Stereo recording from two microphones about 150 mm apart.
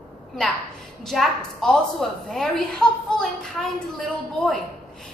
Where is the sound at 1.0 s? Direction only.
5° left (ahead or behind).